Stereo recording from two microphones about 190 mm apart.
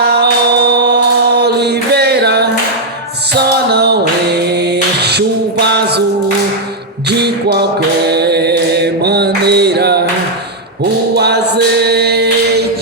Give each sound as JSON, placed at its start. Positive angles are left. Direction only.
{"t": 0.0, "sound": "music", "side_deg": -60}
{"t": 4.9, "sound": "music", "side_deg": -60}
{"t": 7.1, "sound": "music", "side_deg": -60}
{"t": 11.1, "sound": "a sound", "side_deg": -60}